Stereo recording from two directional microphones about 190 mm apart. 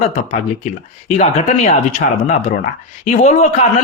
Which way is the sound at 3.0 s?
35° left (ahead or behind).